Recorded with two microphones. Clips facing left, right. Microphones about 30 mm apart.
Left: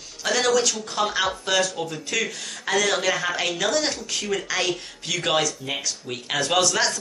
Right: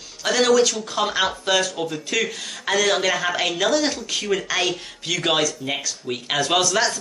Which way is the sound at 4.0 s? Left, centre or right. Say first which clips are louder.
Right 3 dB; right.